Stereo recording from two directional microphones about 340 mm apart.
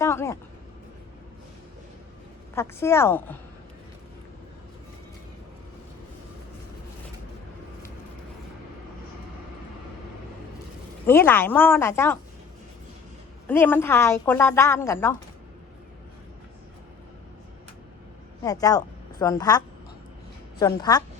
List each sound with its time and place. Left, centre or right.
0.0 s a sound: centre
2.6 s a woman's voice: centre
11.0 s a woman's voice: centre
13.5 s a woman's voice: centre
18.4 s a woman's voice: centre